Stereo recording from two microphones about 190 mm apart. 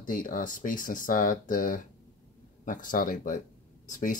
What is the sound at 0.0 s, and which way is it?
Speech, 45° left (ahead or behind).